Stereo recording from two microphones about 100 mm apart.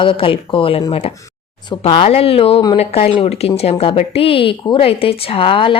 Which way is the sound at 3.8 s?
80° left.